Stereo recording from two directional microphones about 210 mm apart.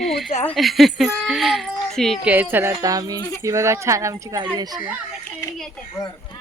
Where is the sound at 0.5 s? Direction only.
Centre (ahead or behind); by 4.8 s 20° right (ahead or behind).